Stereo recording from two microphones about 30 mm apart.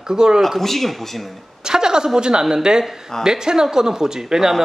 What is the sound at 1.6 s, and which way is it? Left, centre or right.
Speech, right.